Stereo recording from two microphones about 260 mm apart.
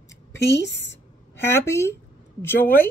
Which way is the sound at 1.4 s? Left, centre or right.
Centre.